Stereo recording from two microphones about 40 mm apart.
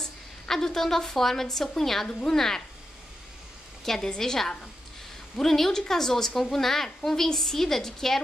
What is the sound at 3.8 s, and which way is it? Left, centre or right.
A woman's voice, centre.